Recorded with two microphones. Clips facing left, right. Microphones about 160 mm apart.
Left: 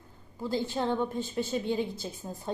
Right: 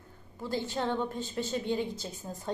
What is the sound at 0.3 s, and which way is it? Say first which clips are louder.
Speech: left 2 dB; 15° left (ahead or behind).